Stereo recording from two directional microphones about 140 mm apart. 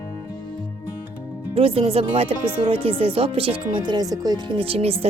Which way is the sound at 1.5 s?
45° right (ahead or behind).